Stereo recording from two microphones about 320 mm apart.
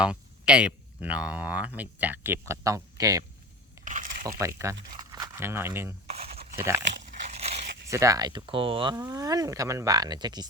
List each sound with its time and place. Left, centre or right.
0.0 s speech: centre
3.8 s a sound: right
4.3 s speech: centre
6.1 s a sound: centre
7.0 s crunch: centre
7.9 s speech: centre